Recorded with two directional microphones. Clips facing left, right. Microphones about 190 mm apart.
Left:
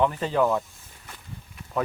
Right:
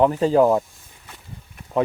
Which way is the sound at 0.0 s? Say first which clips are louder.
Right 7 dB; 40° right (ahead or behind).